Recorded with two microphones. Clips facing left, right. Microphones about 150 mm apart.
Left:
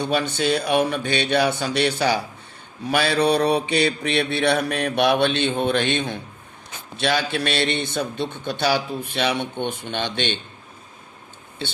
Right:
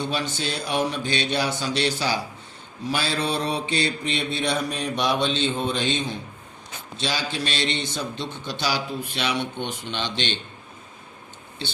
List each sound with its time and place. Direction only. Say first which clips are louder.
0.0 s mantra: left 5 dB; 60° left (ahead or behind)